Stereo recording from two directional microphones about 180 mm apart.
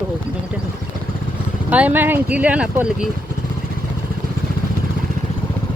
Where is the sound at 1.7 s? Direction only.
10° right (ahead or behind).